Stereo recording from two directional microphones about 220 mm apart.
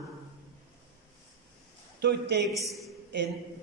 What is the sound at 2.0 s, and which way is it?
Speech, 50° right (ahead or behind).